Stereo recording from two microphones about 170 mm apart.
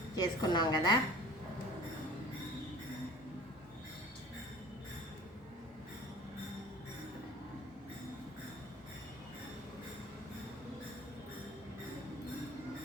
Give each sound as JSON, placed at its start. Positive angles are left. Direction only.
{"t": 0.2, "sound": "a woman's voice", "side_deg": 25}